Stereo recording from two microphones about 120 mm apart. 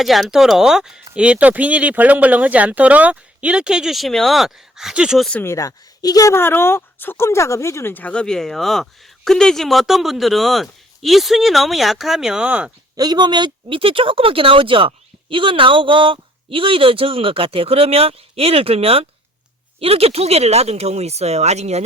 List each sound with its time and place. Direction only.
0.0 s speech: centre (ahead or behind)
5.3 s speech: 20° left (ahead or behind); by 12.7 s 10° right (ahead or behind)
13.0 s speech: 35° right (ahead or behind); by 21.8 s 65° right (ahead or behind)